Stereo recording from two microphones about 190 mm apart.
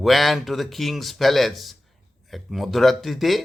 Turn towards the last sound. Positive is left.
turn(degrees=0)  # may be behind; listen again after turning